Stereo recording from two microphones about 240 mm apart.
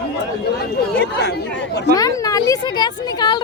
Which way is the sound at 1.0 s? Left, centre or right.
Left.